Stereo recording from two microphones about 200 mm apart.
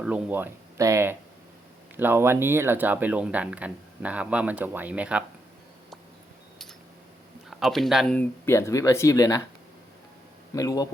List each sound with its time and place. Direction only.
0.0 s speech: 5° right (ahead or behind)
7.6 s speech: centre (ahead or behind); by 9.4 s 15° left (ahead or behind)
10.5 s speech: 15° left (ahead or behind)